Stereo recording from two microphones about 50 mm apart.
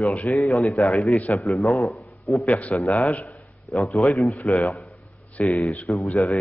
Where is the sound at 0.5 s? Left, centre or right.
Centre.